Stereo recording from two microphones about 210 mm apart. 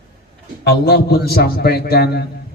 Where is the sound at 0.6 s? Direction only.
50° left (ahead or behind).